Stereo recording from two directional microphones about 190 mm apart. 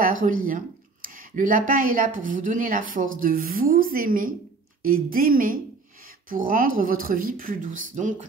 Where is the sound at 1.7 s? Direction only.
45° right (ahead or behind).